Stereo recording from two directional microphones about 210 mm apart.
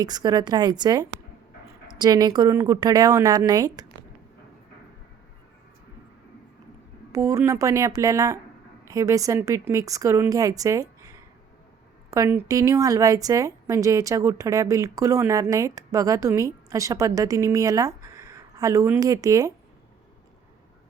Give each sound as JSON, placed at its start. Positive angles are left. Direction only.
{"t": 0.0, "sound": "a woman's voice", "side_deg": -20}
{"t": 7.1, "sound": "a woman's voice", "side_deg": -15}
{"t": 12.1, "sound": "a woman's voice", "side_deg": -15}